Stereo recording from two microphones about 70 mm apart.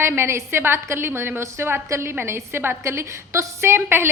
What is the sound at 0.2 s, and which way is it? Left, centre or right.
A woman's voice, right.